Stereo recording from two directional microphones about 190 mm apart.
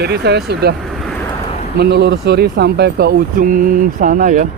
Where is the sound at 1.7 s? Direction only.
60° right (ahead or behind); by 4.5 s 45° right (ahead or behind).